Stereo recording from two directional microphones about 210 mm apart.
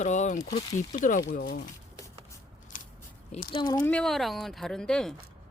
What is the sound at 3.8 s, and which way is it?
Speech, 5° left (ahead or behind).